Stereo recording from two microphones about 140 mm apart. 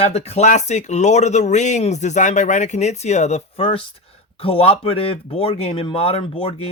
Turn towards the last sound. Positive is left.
turn(degrees=45)  # may be behind; listen again after turning